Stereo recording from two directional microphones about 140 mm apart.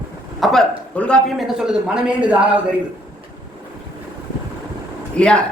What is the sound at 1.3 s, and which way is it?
A man's voice, 5° right (ahead or behind).